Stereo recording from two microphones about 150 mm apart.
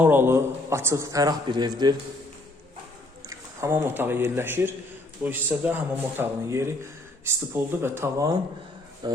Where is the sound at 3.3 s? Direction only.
20° right (ahead or behind).